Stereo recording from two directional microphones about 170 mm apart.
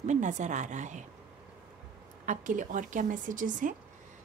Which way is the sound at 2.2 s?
50° right (ahead or behind).